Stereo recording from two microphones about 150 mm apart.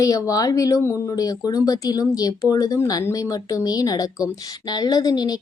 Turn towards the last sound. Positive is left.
turn(degrees=25)  # may be behind; listen again after turning